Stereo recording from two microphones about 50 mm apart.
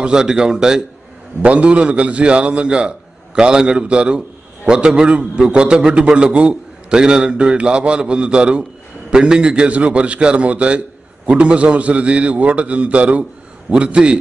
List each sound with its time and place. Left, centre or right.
0.0 s a man's voice: centre
1.4 s a man's voice: right